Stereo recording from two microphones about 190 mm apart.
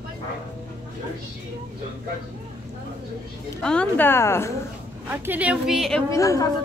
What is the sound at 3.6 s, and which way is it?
Speech, 5° left (ahead or behind).